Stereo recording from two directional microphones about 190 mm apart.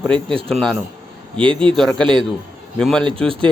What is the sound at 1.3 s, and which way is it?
Speech, 25° right (ahead or behind).